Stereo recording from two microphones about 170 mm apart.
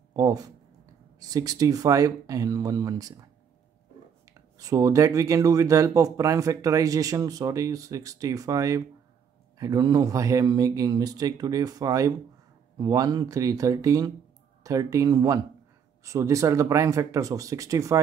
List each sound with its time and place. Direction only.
0.1 s speech: 20° right (ahead or behind)
4.3 s speech: 20° right (ahead or behind)